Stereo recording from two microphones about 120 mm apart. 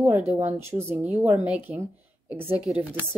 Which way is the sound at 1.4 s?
15° right (ahead or behind).